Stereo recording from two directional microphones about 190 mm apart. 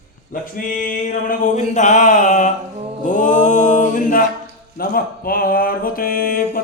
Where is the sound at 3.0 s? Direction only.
45° left (ahead or behind).